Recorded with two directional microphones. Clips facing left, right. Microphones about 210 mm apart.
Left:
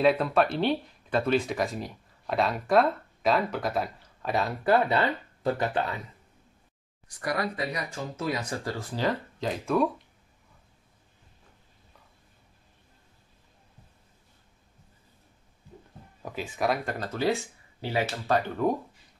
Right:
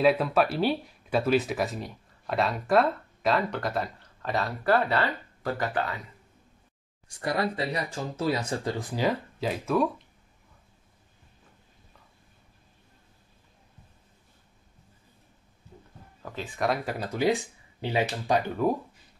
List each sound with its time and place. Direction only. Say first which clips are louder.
0.0 s speech: even; 5° right (ahead or behind); by 5.7 s 20° left (ahead or behind)
7.1 s speech: right 2 dB; 25° right (ahead or behind); by 9.8 s 5° right (ahead or behind)
16.2 s speech: left 1 dB; 10° left (ahead or behind)
17.0 s speech: right 5 dB; 15° right (ahead or behind)